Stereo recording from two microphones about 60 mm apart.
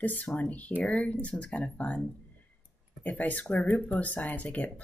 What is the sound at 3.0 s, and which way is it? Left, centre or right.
Speech, left.